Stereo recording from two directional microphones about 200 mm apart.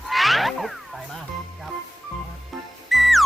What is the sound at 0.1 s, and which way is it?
Music, centre (ahead or behind).